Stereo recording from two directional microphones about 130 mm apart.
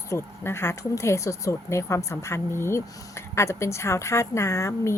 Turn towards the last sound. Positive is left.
turn(degrees=20)  # may be behind; listen again after turning